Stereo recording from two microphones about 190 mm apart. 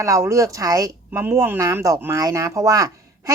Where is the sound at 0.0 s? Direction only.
15° right (ahead or behind).